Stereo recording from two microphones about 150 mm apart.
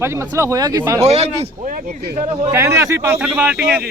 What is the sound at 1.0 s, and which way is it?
Speech, 45° right (ahead or behind).